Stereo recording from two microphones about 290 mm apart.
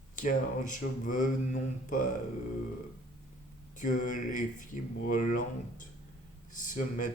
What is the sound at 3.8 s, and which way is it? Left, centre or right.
Speech, left.